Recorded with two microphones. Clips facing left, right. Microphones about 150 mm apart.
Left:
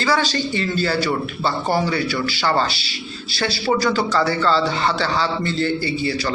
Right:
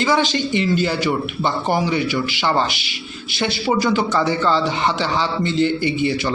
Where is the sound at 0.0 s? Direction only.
20° right (ahead or behind).